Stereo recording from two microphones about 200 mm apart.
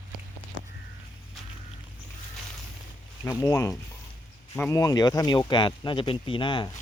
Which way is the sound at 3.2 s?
15° left (ahead or behind).